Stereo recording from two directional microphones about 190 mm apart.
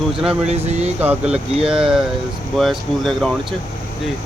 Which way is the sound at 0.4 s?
35° right (ahead or behind).